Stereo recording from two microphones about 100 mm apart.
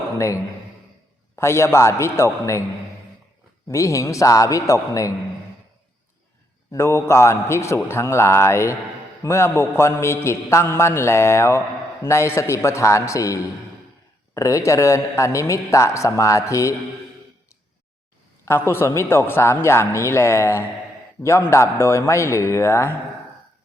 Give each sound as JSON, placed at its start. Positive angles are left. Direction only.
{"t": 0.2, "sound": "a man's voice", "side_deg": 30}
{"t": 3.7, "sound": "a man's voice", "side_deg": 30}
{"t": 6.7, "sound": "a man's voice", "side_deg": 30}
{"t": 18.4, "sound": "a man's voice", "side_deg": 25}